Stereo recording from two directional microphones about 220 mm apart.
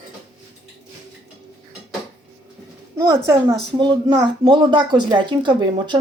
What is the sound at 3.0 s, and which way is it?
A woman's voice, 15° right (ahead or behind).